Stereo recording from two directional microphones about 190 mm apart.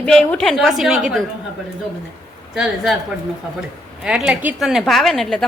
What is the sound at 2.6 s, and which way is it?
Speech, centre (ahead or behind).